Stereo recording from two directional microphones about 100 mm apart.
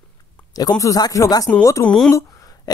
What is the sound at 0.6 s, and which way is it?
Speech, 35° left (ahead or behind).